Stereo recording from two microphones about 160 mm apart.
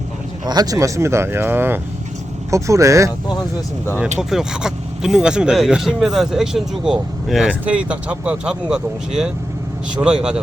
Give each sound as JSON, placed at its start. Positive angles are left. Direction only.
{"t": 0.4, "sound": "speech", "side_deg": -25}
{"t": 4.2, "sound": "speech", "side_deg": -5}